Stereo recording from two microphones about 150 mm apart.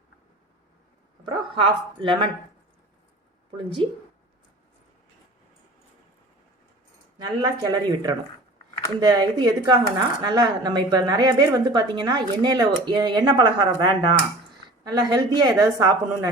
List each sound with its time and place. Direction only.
1.2 s a man's voice: 35° right (ahead or behind)
3.8 s a man's voice: 35° right (ahead or behind)
7.3 s speech: 30° right (ahead or behind)